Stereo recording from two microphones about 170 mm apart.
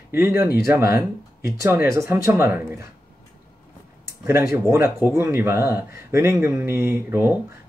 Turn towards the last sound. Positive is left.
turn(degrees=-15)  # may be behind; listen again after turning